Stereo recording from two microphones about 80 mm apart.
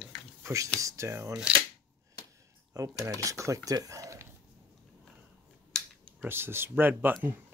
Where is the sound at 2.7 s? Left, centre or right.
Right.